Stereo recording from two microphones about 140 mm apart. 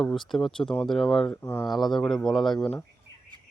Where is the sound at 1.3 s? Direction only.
15° left (ahead or behind).